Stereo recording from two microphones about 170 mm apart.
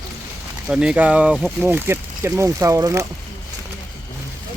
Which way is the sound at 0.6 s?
5° right (ahead or behind).